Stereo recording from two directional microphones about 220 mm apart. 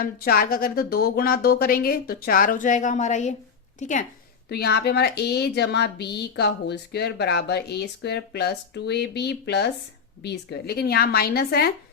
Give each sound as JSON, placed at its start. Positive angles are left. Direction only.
{"t": 0.0, "sound": "speech", "side_deg": 40}
{"t": 4.4, "sound": "a woman's voice", "side_deg": 45}